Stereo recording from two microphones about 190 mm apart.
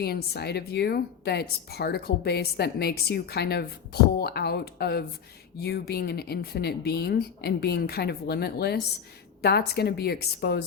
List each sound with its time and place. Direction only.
0.0 s speech: 60° left (ahead or behind)